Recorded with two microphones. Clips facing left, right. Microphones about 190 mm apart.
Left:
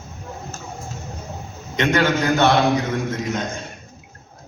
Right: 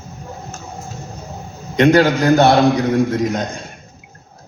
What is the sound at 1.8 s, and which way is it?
A man's voice, 35° right (ahead or behind).